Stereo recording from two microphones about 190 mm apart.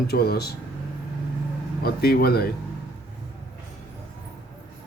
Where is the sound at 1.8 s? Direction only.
55° left (ahead or behind).